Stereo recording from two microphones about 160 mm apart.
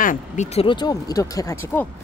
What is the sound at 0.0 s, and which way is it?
Speech, 55° left (ahead or behind).